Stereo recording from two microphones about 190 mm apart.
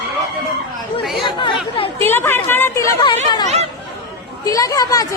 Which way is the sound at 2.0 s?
10° left (ahead or behind).